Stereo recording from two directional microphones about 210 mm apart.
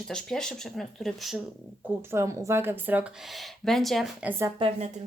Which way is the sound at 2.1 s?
15° right (ahead or behind).